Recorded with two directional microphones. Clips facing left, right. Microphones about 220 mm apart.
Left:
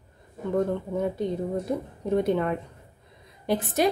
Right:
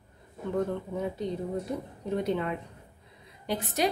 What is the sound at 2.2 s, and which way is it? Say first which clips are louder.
A woman's voice: left 5 dB; 50° left (ahead or behind).